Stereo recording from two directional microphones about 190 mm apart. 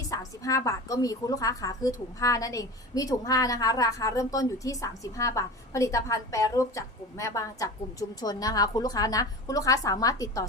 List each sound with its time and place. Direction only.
0.1 s a woman's voice: 20° left (ahead or behind)